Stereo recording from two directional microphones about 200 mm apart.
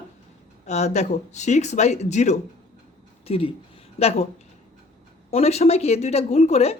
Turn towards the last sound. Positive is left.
turn(degrees=30)  # may be behind; listen again after turning